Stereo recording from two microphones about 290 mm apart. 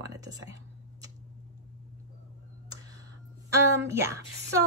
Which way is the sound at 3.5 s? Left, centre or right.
Centre.